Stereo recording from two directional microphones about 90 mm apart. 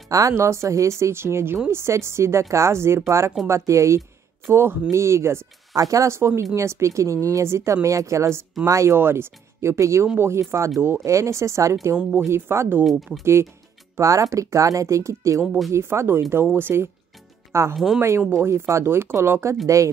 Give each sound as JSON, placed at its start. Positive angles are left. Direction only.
{"t": 0.1, "sound": "speech", "side_deg": -35}
{"t": 12.0, "sound": "speech", "side_deg": -10}
{"t": 12.3, "sound": "speech", "side_deg": -30}